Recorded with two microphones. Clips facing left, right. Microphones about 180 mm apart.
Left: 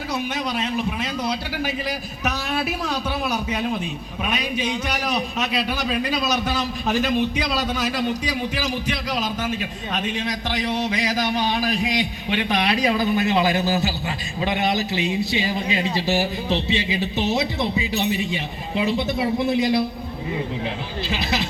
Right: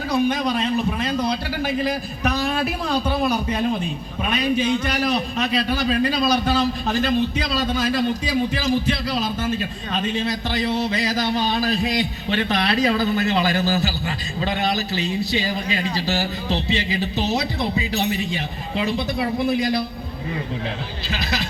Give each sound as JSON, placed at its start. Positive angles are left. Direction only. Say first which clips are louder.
{"t": 0.1, "sound": "a man's voice", "louder": "right 6 dB", "side_deg": 5}
{"t": 4.2, "sound": "a man's voice", "louder": "right 4 dB", "side_deg": 10}
{"t": 21.1, "sound": "speech", "louder": "left 2 dB", "side_deg": 25}